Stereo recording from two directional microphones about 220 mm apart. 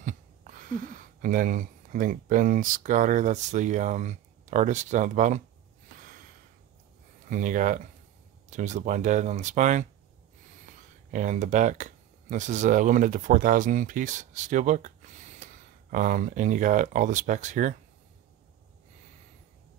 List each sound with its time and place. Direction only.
0.0 s speech: 35° right (ahead or behind)
5.9 s snort: 40° right (ahead or behind)
7.2 s speech: 35° right (ahead or behind)